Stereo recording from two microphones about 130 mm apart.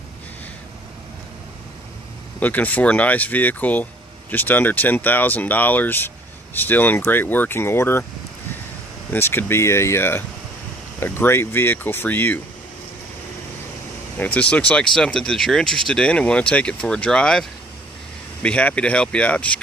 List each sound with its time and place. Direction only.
2.4 s speech: 15° left (ahead or behind)
9.1 s speech: 15° left (ahead or behind)
14.1 s speech: 10° left (ahead or behind)